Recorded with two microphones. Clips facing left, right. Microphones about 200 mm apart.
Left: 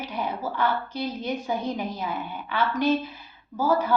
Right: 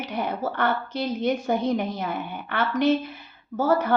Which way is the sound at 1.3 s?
90° right.